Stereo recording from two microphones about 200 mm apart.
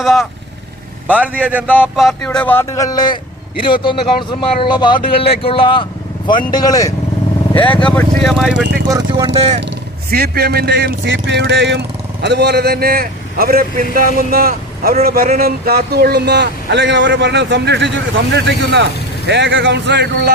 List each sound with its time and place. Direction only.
0.0 s a man's voice: centre (ahead or behind)
1.6 s speech: 10° left (ahead or behind)
7.5 s speech: 10° left (ahead or behind)
8.9 s a man's voice: 15° right (ahead or behind)
10.1 s speech: 50° right (ahead or behind)